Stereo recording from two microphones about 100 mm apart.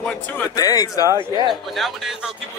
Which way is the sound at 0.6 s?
35° left (ahead or behind).